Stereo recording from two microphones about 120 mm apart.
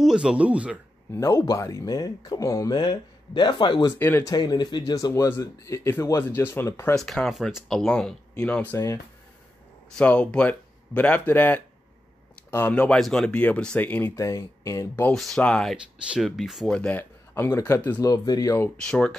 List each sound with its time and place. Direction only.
0.0 s speech: 5° right (ahead or behind)
1.1 s speech: 25° left (ahead or behind); by 3.9 s 45° left (ahead or behind)
4.0 s speech: 20° left (ahead or behind)
4.3 s speech: 35° left (ahead or behind); by 7.0 s 20° left (ahead or behind)
7.0 s speech: centre (ahead or behind)
9.9 s speech: 10° left (ahead or behind)
14.1 s speech: 25° left (ahead or behind)
15.0 s speech: 5° left (ahead or behind)
16.7 s speech: 10° left (ahead or behind)
18.0 s speech: 35° left (ahead or behind)
18.8 s speech: 5° left (ahead or behind)